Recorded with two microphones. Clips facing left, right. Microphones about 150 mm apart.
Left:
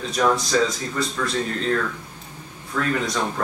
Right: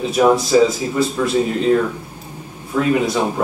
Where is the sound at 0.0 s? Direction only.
10° right (ahead or behind).